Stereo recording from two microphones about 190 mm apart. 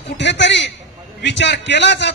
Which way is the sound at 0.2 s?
70° left (ahead or behind).